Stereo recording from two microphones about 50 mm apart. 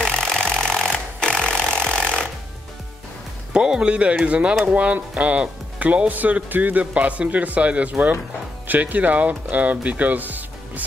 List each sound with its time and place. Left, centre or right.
0.0 s a sound: centre
0.6 s wood: centre
3.5 s speech: centre; by 10.8 s right